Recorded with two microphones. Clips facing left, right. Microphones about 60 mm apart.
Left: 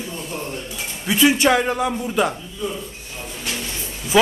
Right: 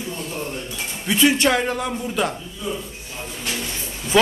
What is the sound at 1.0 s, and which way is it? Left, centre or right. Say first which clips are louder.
A man's voice: left 1 dB; centre.